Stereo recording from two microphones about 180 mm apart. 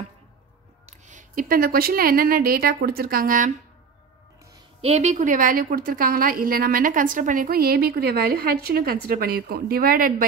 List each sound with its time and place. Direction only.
0.8 s a woman's voice: 40° right (ahead or behind)
4.8 s a woman's voice: 40° right (ahead or behind)